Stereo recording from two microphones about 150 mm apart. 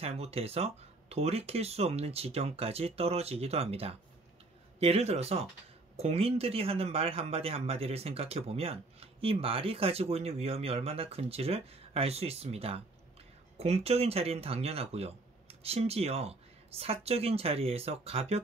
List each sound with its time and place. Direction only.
0.0 s speech: 45° right (ahead or behind)